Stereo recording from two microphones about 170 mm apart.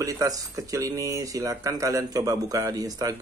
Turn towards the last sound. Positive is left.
turn(degrees=-20)  # may be behind; listen again after turning